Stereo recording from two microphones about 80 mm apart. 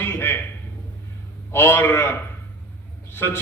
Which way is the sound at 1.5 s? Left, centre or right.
Left.